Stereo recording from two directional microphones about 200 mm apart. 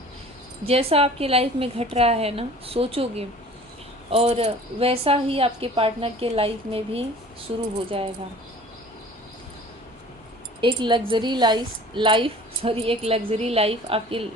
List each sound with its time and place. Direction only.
0.6 s a woman's voice: 30° right (ahead or behind)
10.6 s a woman's voice: 25° right (ahead or behind)